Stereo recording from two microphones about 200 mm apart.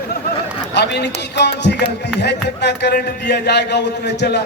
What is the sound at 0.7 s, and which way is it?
A man's voice, 60° left (ahead or behind).